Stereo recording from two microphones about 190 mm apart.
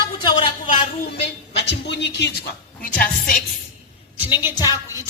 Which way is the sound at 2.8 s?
45° left (ahead or behind).